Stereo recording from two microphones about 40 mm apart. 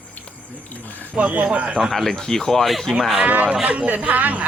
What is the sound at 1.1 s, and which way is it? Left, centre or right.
Speech, right.